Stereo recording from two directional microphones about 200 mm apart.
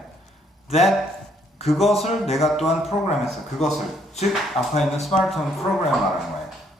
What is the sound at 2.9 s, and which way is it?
Speech, 35° left (ahead or behind).